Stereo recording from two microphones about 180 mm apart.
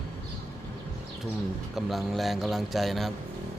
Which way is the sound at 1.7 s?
Centre (ahead or behind).